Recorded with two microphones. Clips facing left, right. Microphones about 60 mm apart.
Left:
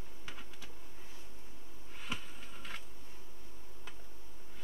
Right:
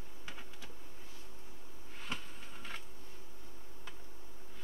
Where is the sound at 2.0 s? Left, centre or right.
Centre.